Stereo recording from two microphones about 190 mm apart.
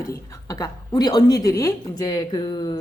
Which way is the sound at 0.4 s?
20° left (ahead or behind).